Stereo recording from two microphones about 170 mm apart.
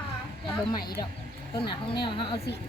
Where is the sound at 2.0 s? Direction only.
30° left (ahead or behind).